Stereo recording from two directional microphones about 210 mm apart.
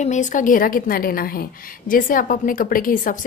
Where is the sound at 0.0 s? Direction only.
35° left (ahead or behind).